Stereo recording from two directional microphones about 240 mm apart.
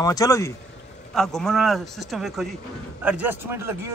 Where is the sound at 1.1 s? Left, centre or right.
Centre.